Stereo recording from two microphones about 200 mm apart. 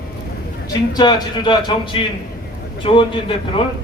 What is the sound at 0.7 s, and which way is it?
A man's voice, 20° left (ahead or behind).